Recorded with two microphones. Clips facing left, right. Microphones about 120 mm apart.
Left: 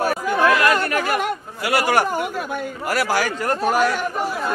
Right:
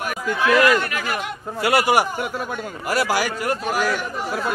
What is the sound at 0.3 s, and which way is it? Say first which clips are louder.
Speech: right 1 dB; 45° left (ahead or behind).